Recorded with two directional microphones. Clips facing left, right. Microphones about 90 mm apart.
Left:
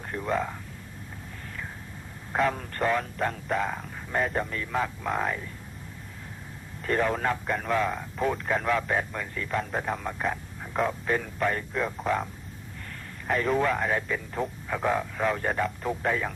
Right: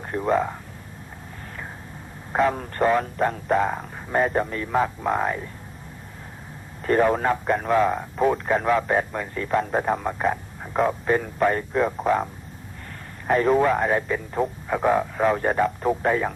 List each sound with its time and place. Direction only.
0.0 s speech: 30° right (ahead or behind)
2.5 s speech: 30° right (ahead or behind)
6.8 s speech: 30° right (ahead or behind)
13.2 s speech: 40° right (ahead or behind)